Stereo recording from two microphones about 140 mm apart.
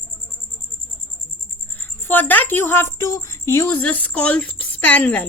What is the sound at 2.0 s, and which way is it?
A woman's voice, 15° left (ahead or behind).